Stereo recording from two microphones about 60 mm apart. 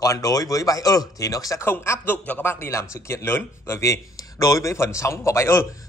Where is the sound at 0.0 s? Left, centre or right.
Left.